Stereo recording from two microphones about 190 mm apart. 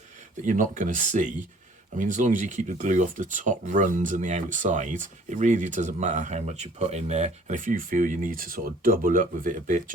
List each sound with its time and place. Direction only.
0.4 s speech: 45° right (ahead or behind)